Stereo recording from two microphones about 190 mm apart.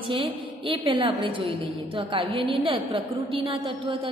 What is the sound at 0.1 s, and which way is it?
A woman's voice, 25° right (ahead or behind).